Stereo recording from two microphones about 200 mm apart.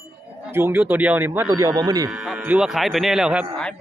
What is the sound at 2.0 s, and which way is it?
Speech, centre (ahead or behind).